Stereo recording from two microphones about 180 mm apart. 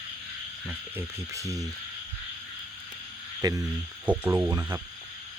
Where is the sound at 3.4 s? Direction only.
20° right (ahead or behind).